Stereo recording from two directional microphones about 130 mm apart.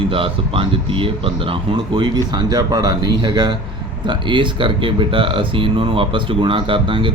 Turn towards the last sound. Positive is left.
turn(degrees=-40)  # may be behind; listen again after turning